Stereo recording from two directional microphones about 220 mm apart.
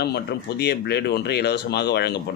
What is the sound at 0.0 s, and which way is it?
Speech, 50° left (ahead or behind).